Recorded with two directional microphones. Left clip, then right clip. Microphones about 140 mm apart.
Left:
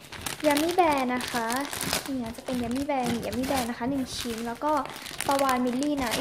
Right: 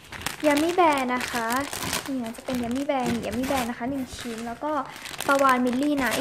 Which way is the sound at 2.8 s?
20° right (ahead or behind).